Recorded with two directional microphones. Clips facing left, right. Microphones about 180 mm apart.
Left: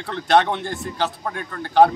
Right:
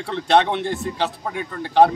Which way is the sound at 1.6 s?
Centre (ahead or behind).